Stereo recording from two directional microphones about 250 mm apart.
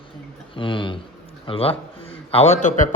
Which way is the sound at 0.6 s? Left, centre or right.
Centre.